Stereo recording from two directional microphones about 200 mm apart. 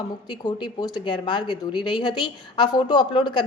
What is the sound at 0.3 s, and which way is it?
A woman's voice, 20° left (ahead or behind).